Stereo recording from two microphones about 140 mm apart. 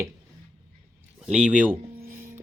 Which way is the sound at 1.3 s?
10° right (ahead or behind).